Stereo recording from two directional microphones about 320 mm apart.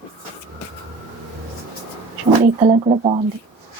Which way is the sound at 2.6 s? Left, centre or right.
Centre.